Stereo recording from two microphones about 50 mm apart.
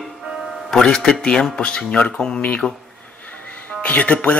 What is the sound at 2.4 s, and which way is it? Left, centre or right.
Speech, left.